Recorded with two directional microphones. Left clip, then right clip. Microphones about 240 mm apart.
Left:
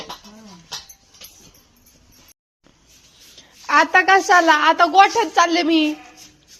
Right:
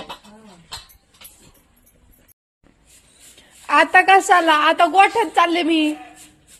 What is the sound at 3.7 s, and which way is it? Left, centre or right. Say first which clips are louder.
A woman's voice: right 1 dB; centre.